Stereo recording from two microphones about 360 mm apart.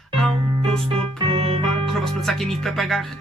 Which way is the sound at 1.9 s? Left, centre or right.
Centre.